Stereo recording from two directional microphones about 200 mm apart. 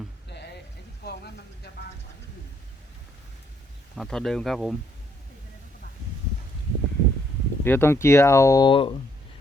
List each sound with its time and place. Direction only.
0.3 s a sound: 55° left (ahead or behind)
3.9 s speech: centre (ahead or behind)
7.6 s speech: 10° left (ahead or behind)